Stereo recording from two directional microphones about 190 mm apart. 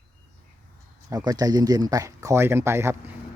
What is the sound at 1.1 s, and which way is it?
Speech, 20° right (ahead or behind).